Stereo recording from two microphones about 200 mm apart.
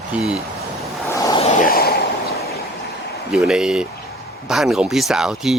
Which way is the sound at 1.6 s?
50° left (ahead or behind).